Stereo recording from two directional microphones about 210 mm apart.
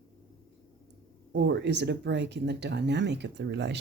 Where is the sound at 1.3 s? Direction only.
55° right (ahead or behind).